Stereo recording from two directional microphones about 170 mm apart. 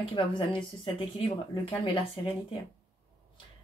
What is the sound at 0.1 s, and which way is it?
Speech, 30° left (ahead or behind).